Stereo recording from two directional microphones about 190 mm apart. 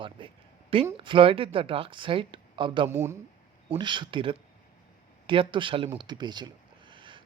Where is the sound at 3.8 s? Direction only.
25° right (ahead or behind).